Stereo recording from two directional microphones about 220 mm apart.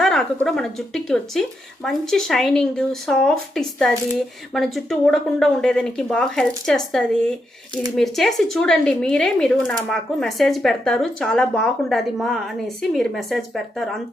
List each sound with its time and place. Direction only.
0.0 s speech: centre (ahead or behind)